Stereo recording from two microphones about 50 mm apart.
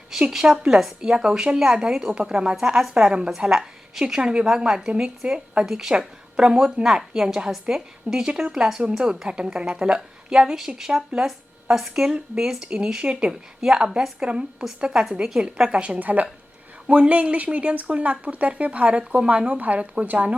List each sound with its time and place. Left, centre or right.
0.3 s a woman's voice: centre
1.1 s a woman's voice: centre